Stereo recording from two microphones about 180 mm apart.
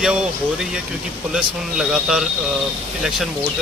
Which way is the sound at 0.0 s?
5° right (ahead or behind).